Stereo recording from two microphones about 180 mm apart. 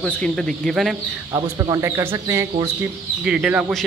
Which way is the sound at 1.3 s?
20° right (ahead or behind).